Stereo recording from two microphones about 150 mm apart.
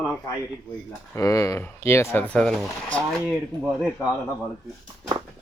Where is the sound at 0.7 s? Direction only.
30° left (ahead or behind); by 4.1 s 5° right (ahead or behind).